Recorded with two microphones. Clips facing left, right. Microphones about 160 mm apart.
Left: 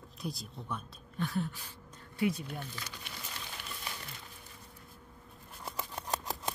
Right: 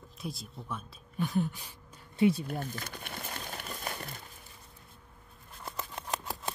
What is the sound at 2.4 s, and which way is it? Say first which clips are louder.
Crumpling: right 5 dB; 45° right (ahead or behind).